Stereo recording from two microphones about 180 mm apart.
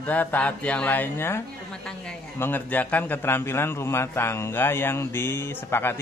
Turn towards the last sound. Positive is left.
turn(degrees=15)  # may be behind; listen again after turning